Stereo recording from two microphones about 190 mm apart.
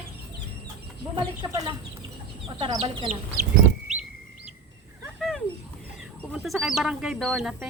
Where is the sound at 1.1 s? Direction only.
25° right (ahead or behind).